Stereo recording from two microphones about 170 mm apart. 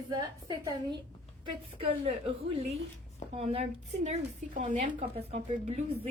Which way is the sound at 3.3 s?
35° right (ahead or behind).